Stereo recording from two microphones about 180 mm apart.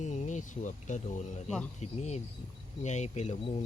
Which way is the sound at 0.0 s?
40° left (ahead or behind).